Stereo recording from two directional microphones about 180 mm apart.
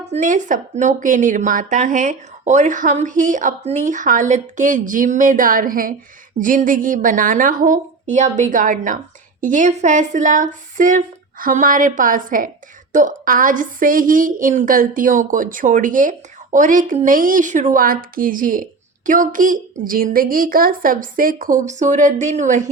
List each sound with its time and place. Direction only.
0.0 s a woman's voice: 40° right (ahead or behind)